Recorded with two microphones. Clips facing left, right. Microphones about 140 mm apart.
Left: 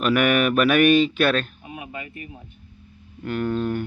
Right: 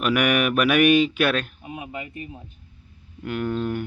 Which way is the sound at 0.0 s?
10° right (ahead or behind).